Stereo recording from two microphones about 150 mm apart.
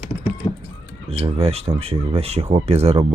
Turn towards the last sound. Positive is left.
turn(degrees=-45)  # may be behind; listen again after turning